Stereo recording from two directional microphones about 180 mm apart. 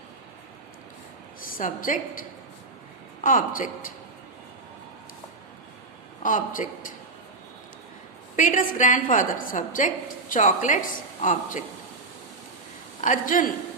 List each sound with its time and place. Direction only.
1.4 s a woman's voice: 50° left (ahead or behind)
3.2 s a woman's voice: 50° left (ahead or behind)
6.2 s a woman's voice: 45° left (ahead or behind)
8.4 s a woman's voice: 45° left (ahead or behind)
13.0 s a woman's voice: 45° left (ahead or behind)